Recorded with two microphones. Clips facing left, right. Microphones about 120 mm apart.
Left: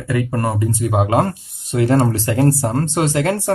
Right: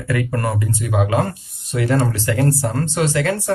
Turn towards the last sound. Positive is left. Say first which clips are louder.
# left 1 dB
turn(degrees=40)  # may be behind; listen again after turning